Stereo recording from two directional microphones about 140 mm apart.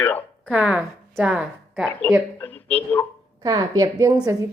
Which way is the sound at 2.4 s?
10° left (ahead or behind).